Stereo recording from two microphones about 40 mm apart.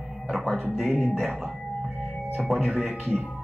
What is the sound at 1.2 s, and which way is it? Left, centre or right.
Speech, right.